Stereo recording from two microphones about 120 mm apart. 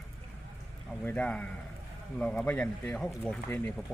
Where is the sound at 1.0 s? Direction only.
10° left (ahead or behind).